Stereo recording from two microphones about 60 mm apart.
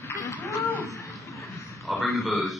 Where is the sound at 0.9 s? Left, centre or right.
Left.